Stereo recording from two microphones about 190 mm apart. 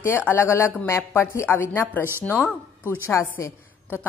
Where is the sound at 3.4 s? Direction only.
10° left (ahead or behind).